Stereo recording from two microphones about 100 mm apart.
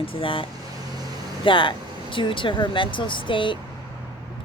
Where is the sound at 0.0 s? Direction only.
65° left (ahead or behind).